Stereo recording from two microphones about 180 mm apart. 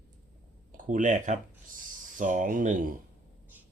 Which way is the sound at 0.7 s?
45° right (ahead or behind).